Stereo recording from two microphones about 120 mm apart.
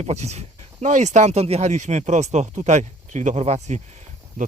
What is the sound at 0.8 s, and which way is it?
Speech, 85° right.